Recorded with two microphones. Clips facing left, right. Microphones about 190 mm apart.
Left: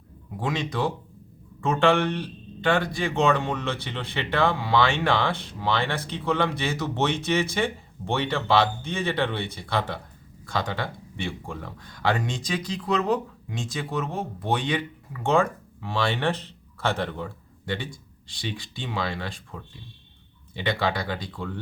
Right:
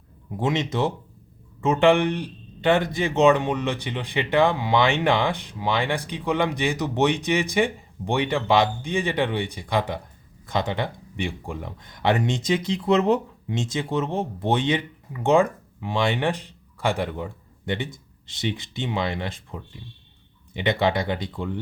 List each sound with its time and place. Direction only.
0.3 s speech: 20° right (ahead or behind)